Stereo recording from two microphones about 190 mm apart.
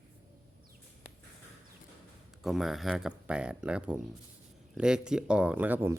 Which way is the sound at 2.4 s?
Centre (ahead or behind).